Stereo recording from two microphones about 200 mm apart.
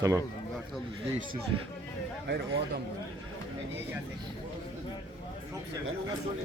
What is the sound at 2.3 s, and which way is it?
Speech, 65° right (ahead or behind).